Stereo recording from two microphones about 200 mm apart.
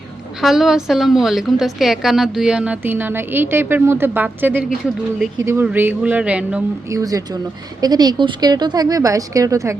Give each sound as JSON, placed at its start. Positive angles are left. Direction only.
{"t": 0.4, "sound": "a woman's voice", "side_deg": 0}
{"t": 7.8, "sound": "speech", "side_deg": -20}